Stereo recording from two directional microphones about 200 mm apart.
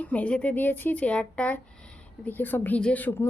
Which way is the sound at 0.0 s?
5° left (ahead or behind).